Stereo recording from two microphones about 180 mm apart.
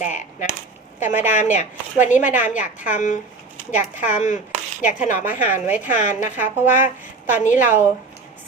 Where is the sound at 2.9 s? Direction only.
45° left (ahead or behind).